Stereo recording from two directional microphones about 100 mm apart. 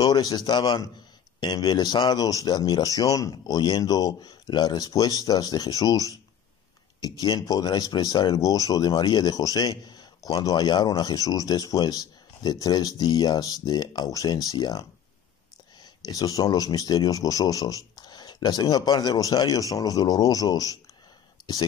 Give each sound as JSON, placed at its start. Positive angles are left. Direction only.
{"t": 0.0, "sound": "a man's voice", "side_deg": 45}
{"t": 16.1, "sound": "speech", "side_deg": 35}